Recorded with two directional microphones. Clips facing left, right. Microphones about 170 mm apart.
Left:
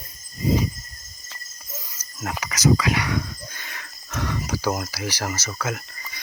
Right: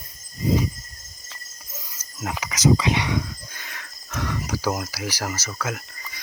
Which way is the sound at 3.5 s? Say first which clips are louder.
Left 1 dB; centre (ahead or behind).